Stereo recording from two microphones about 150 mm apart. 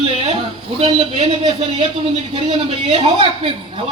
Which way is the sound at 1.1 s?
45° right (ahead or behind).